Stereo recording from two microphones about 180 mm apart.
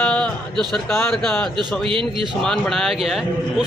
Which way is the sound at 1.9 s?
30° right (ahead or behind).